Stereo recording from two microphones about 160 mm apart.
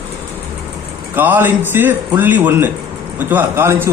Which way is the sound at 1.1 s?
10° right (ahead or behind).